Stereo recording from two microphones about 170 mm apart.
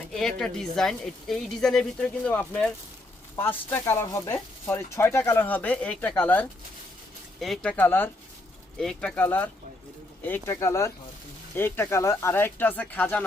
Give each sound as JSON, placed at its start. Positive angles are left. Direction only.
{"t": 0.1, "sound": "a woman's voice", "side_deg": 0}